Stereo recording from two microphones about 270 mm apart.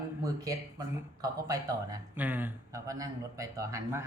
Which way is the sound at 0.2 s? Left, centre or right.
Centre.